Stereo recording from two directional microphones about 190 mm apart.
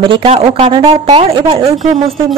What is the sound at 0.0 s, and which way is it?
A woman's voice, 25° right (ahead or behind).